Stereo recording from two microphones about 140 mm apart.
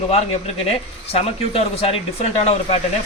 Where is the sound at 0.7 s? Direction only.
45° left (ahead or behind).